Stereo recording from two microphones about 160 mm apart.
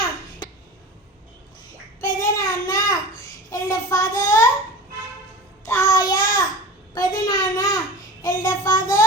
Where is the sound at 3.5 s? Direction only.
20° left (ahead or behind).